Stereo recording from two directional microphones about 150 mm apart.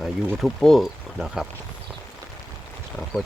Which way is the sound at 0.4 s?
Centre (ahead or behind).